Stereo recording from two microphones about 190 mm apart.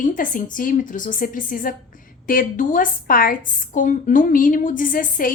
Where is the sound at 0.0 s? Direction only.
45° left (ahead or behind).